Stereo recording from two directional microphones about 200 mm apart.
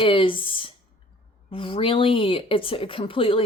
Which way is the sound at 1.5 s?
25° left (ahead or behind).